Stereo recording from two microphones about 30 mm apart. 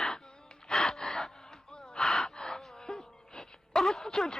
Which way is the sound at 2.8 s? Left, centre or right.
Left.